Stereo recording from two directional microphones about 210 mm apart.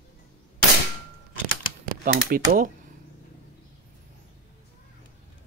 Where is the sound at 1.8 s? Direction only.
40° right (ahead or behind).